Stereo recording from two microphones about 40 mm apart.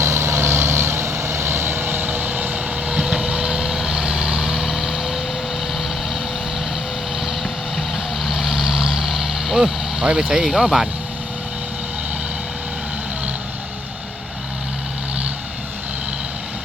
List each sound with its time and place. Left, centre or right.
0.0 s vehicle: right
2.8 s vehicle: centre
7.4 s vehicle: centre
10.0 s speech: right